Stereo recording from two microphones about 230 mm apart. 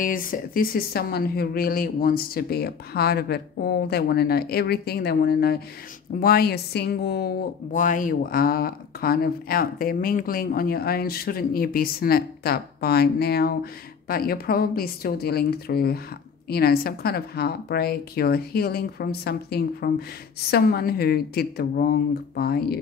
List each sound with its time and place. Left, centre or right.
0.0 s a woman's voice: left